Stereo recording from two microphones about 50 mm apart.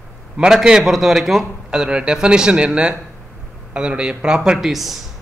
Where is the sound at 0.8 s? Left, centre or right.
Centre.